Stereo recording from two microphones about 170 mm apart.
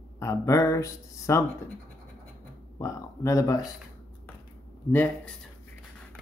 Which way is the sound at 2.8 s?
20° left (ahead or behind).